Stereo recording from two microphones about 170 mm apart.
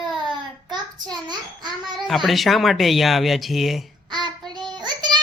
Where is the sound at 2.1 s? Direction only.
Centre (ahead or behind).